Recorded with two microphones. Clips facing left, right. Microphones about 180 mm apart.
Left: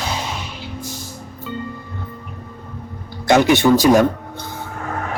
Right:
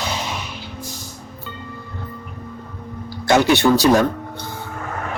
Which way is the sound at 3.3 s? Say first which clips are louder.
Left 2 dB; 15° left (ahead or behind).